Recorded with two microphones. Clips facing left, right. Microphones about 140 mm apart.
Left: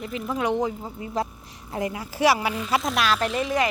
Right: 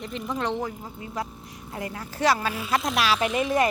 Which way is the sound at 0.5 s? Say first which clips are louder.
Left 5 dB; 20° left (ahead or behind).